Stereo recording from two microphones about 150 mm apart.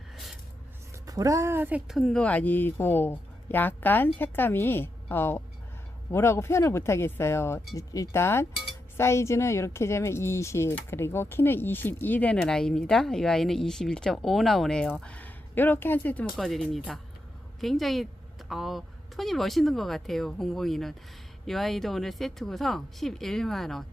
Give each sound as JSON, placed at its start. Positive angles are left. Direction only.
{"t": 1.0, "sound": "speech", "side_deg": -25}
{"t": 16.3, "sound": "a woman's voice", "side_deg": 0}